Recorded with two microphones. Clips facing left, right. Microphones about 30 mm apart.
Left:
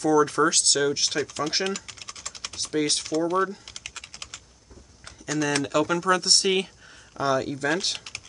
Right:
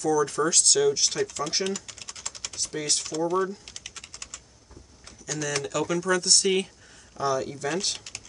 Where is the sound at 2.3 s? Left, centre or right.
Left.